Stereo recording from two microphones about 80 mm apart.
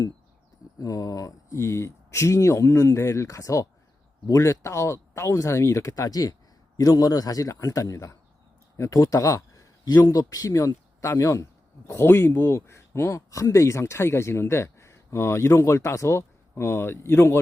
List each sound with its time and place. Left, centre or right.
0.8 s a man's voice: left